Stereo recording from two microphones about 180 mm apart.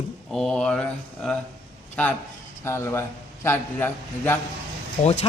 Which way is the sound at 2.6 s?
15° left (ahead or behind).